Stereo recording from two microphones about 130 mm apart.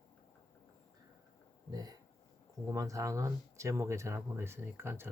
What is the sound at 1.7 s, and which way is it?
Speech, 30° right (ahead or behind).